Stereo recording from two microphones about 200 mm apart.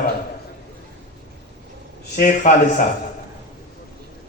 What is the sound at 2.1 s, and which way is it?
Speech, 40° left (ahead or behind).